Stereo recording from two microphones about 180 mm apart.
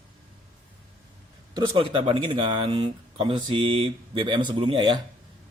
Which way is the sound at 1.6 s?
30° right (ahead or behind).